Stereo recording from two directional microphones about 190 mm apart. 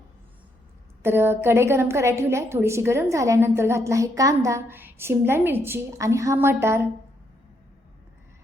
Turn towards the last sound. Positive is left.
turn(degrees=-15)  # may be behind; listen again after turning